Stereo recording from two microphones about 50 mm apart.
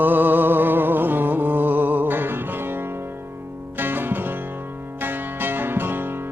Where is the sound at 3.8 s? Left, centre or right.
Right.